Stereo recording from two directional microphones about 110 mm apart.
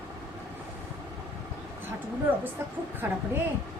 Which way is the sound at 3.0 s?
20° right (ahead or behind).